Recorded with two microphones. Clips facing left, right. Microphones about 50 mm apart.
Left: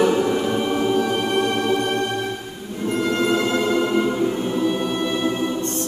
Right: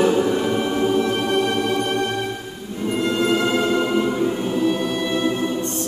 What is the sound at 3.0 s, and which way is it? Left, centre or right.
Music, centre.